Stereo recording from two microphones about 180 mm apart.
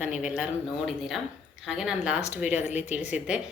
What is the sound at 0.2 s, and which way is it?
Speech, 5° right (ahead or behind).